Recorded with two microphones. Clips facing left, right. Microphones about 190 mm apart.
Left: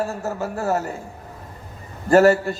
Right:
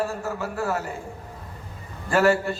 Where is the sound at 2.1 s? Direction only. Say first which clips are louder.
Left 6 dB; 40° left (ahead or behind).